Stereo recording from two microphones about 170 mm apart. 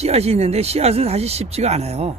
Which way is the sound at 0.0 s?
40° right (ahead or behind).